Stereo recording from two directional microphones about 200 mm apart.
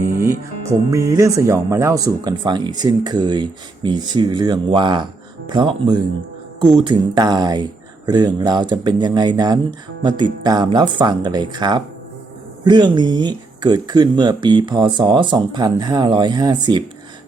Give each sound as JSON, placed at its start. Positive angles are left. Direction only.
{"t": 0.2, "sound": "speech", "side_deg": -15}